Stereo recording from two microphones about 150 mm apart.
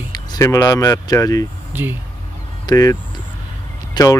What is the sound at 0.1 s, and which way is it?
Speech, 25° left (ahead or behind).